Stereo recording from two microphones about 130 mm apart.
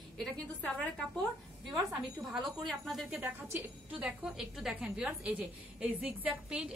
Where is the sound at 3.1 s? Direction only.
15° right (ahead or behind).